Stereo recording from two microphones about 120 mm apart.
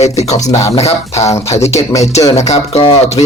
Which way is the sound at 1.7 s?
25° left (ahead or behind).